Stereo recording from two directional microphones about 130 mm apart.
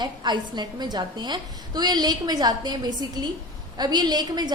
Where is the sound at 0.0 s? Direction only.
35° right (ahead or behind).